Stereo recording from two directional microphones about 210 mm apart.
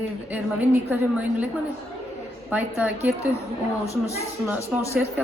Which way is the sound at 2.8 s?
10° right (ahead or behind).